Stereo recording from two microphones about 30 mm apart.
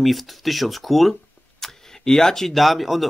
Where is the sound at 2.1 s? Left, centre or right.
Centre.